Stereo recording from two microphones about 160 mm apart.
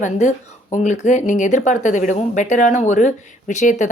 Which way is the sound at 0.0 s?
50° left (ahead or behind).